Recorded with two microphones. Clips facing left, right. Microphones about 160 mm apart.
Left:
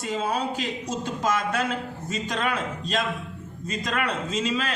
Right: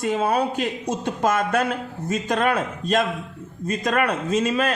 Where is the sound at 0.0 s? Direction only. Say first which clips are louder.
Right 6 dB; 60° right (ahead or behind).